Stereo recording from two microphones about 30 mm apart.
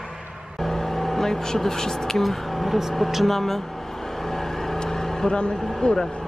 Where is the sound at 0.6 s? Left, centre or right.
Centre.